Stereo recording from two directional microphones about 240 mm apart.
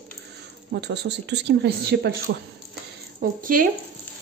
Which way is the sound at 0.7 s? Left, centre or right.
Right.